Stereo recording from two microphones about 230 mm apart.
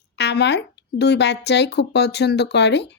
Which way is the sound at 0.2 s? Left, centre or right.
Left.